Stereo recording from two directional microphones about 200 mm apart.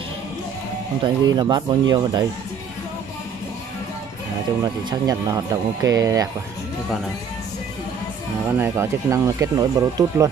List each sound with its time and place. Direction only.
1.0 s speech: 20° right (ahead or behind)
4.8 s speech: 20° right (ahead or behind)
8.5 s speech: 10° right (ahead or behind)